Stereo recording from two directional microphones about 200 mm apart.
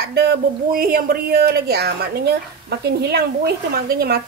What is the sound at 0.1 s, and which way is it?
Speech, 55° right (ahead or behind).